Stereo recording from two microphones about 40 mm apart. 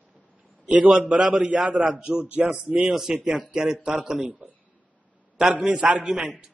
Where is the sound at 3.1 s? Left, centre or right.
Right.